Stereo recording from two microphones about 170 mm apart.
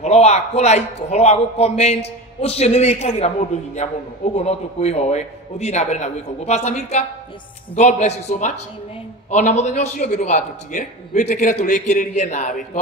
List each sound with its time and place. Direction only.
0.0 s a man's voice: 40° left (ahead or behind)